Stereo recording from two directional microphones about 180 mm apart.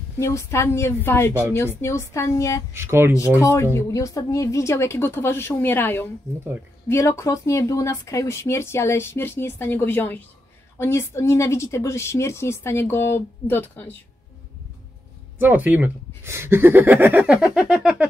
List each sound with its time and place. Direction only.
0.2 s speech: 15° left (ahead or behind)
2.7 s speech: 15° right (ahead or behind)
3.7 s speech: 15° left (ahead or behind)
15.3 s speech: 10° right (ahead or behind)